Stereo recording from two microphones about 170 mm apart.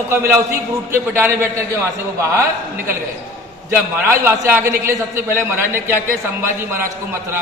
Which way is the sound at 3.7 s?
15° right (ahead or behind).